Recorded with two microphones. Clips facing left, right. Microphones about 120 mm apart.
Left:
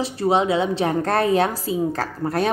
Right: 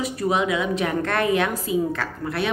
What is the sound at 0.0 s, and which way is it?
A woman's voice, 30° left (ahead or behind).